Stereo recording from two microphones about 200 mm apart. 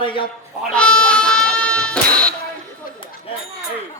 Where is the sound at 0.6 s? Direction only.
5° left (ahead or behind).